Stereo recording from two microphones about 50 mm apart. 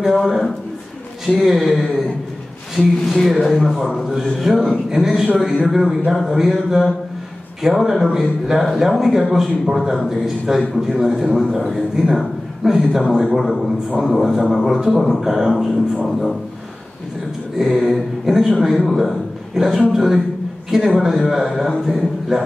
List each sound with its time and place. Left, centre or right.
0.2 s a man's voice: centre
4.0 s a man's voice: centre
13.9 s a man's voice: centre
17.6 s a man's voice: centre